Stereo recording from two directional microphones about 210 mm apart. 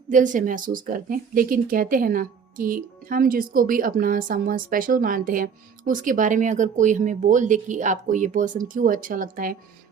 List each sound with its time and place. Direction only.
0.1 s speech: 40° right (ahead or behind)